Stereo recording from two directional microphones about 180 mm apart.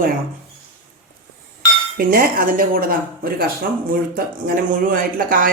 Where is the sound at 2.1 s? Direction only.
50° right (ahead or behind).